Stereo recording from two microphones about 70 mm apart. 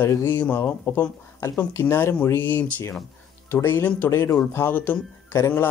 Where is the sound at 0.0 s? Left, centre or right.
Left.